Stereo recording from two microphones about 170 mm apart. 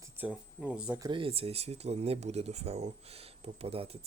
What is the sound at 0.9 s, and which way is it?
Speech, 25° right (ahead or behind).